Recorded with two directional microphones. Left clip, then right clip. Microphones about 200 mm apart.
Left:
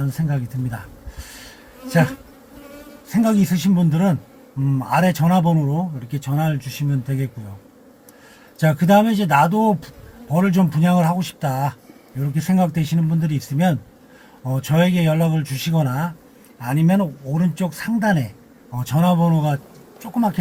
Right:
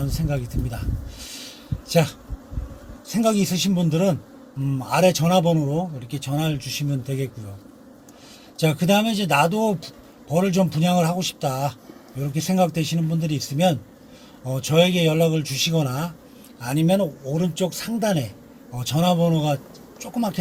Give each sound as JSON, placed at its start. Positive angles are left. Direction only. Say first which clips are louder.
{"t": 3.2, "sound": "speech", "louder": "left 1 dB", "side_deg": 5}
{"t": 8.5, "sound": "speech", "louder": "left 5 dB", "side_deg": 5}